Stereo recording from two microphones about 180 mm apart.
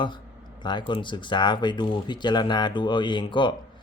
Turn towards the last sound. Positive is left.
turn(degrees=25)  # may be behind; listen again after turning